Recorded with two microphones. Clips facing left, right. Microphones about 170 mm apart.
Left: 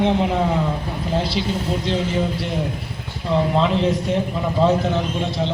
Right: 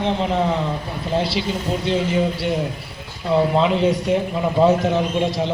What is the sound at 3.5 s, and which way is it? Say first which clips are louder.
A man's voice: right 1 dB; 5° right (ahead or behind).